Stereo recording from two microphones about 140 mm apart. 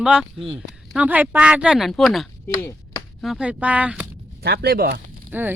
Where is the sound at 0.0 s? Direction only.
5° right (ahead or behind).